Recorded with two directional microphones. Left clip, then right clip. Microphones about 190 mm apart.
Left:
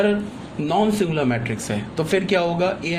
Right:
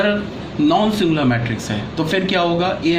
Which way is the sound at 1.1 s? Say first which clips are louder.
Right 4 dB; 45° left (ahead or behind).